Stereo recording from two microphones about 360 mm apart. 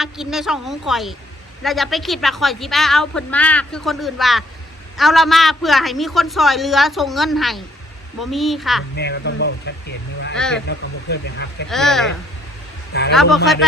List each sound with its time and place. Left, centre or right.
0.0 s a woman's voice: centre
9.0 s speech: left
10.3 s a woman's voice: centre
10.7 s speech: left
11.7 s a woman's voice: centre
12.9 s a man's voice: left
13.3 s a woman's voice: centre